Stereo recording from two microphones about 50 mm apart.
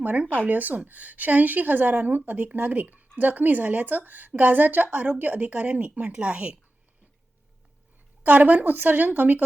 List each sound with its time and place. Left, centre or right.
0.0 s speech: right
8.2 s speech: right